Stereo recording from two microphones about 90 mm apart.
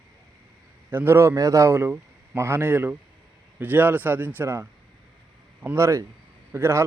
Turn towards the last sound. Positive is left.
turn(degrees=-30)  # may be behind; listen again after turning